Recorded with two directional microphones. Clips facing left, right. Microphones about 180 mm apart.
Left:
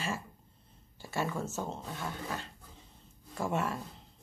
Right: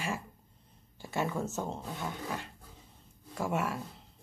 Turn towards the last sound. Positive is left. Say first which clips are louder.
# even
turn(degrees=-10)  # may be behind; listen again after turning